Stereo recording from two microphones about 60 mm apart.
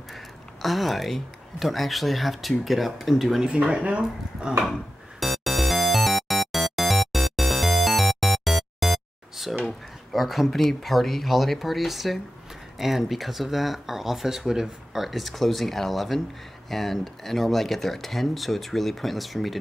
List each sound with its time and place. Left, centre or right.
0.1 s speech: centre
3.4 s speech: centre
5.2 s music: centre
9.7 s speech: centre